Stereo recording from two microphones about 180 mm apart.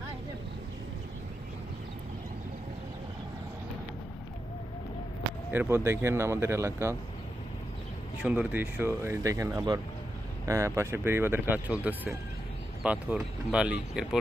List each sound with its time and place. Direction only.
5.5 s speech: 10° right (ahead or behind)
8.2 s speech: 10° right (ahead or behind)